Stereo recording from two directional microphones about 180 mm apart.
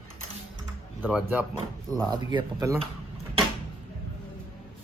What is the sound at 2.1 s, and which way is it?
Speech, 25° right (ahead or behind).